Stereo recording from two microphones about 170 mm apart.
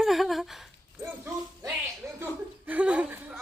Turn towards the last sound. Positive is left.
turn(degrees=-10)  # may be behind; listen again after turning